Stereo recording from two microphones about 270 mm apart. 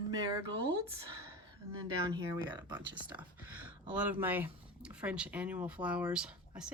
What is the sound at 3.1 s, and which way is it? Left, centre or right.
Speech, centre.